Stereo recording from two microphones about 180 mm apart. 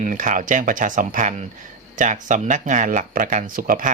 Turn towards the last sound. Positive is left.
turn(degrees=-50)  # may be behind; listen again after turning